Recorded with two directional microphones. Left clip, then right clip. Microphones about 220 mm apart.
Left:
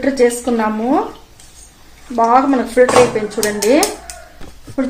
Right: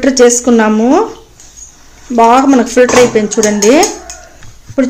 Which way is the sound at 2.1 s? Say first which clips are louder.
Right 6 dB; 50° right (ahead or behind).